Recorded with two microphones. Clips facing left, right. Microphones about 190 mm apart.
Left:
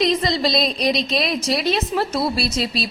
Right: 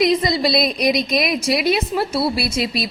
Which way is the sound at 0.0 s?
10° right (ahead or behind).